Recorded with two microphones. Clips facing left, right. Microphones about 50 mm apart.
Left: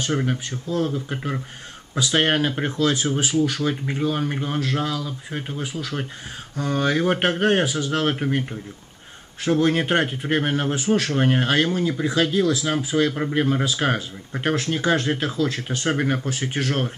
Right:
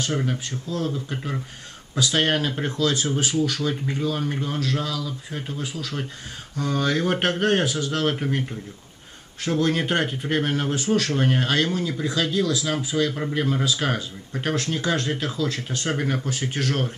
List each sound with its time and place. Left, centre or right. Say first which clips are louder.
0.0 s speech: left 2 dB; centre